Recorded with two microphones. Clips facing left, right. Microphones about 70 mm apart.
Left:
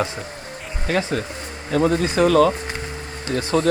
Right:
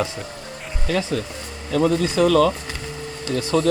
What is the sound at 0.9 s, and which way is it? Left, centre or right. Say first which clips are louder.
A man's voice: left 1 dB; left.